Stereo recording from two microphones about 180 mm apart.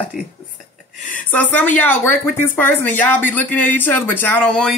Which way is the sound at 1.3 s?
10° left (ahead or behind).